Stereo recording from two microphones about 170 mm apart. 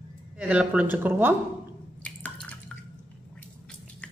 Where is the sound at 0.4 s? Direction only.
5° right (ahead or behind).